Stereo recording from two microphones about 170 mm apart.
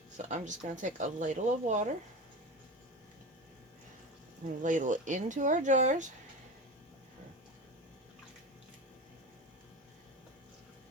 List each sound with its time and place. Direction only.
0.2 s speech: 45° right (ahead or behind)
4.6 s speech: 50° right (ahead or behind)